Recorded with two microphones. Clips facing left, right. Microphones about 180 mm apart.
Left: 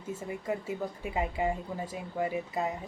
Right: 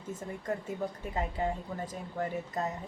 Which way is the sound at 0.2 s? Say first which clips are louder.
Left 1 dB; 10° left (ahead or behind).